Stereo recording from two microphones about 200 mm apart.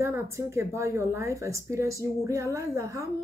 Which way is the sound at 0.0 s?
15° right (ahead or behind).